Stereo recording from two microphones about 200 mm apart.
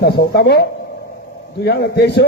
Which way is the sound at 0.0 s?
55° left (ahead or behind).